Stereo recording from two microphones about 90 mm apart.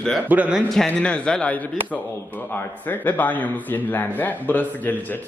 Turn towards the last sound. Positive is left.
turn(degrees=20)  # may be behind; listen again after turning